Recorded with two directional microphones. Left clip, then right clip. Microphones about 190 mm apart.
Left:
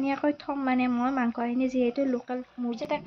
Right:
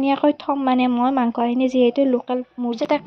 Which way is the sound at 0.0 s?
35° right (ahead or behind).